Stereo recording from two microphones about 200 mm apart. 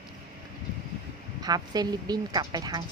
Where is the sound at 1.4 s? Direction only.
20° right (ahead or behind).